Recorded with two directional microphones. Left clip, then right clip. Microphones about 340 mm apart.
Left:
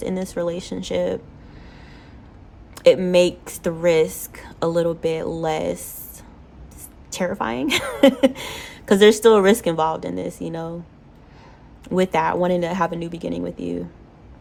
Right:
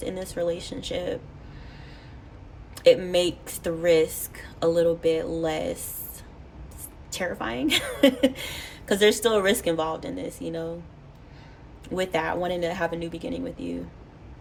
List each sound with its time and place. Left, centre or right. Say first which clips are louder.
0.0 s a woman's voice: left 4 dB; centre
2.7 s a woman's voice: left 5 dB; centre
7.1 s a woman's voice: left 6 dB; centre
11.9 s a woman's voice: left 7 dB; centre